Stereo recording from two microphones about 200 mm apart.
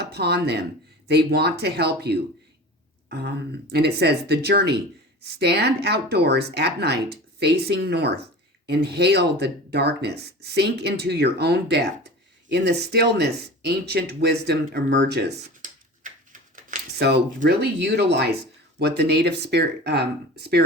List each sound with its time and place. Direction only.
0.0 s speech: 55° right (ahead or behind)
15.3 s a sound: 40° right (ahead or behind); by 18.3 s 55° right (ahead or behind)
18.8 s speech: 55° right (ahead or behind)